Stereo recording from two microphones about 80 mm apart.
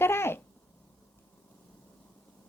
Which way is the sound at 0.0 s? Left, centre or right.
Left.